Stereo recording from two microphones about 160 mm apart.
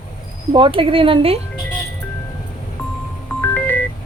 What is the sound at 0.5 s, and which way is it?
Speech, 35° right (ahead or behind).